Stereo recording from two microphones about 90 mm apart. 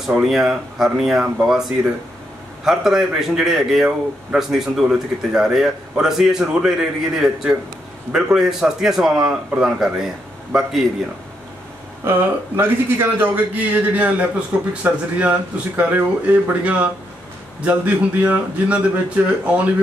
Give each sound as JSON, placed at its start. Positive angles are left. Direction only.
{"t": 0.0, "sound": "a man's voice", "side_deg": -5}
{"t": 12.0, "sound": "a man's voice", "side_deg": -25}